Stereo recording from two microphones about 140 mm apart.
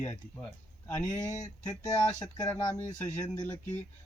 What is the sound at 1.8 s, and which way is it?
Speech, 30° left (ahead or behind).